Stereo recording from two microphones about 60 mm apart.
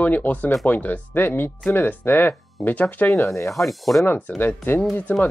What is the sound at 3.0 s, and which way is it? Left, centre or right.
Speech, left.